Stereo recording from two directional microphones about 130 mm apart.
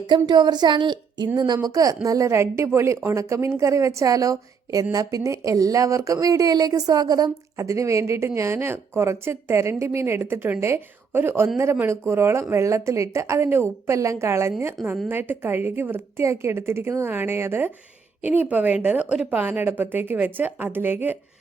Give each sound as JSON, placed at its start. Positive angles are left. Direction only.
{"t": 0.1, "sound": "a woman's voice", "side_deg": -35}